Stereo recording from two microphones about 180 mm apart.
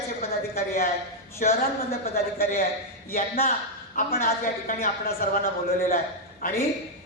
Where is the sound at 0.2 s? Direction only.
55° left (ahead or behind).